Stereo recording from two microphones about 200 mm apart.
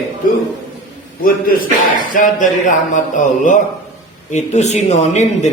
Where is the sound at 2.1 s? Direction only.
40° left (ahead or behind).